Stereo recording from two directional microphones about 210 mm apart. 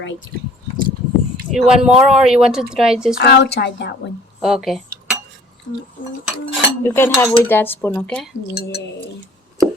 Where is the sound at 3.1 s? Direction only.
50° left (ahead or behind).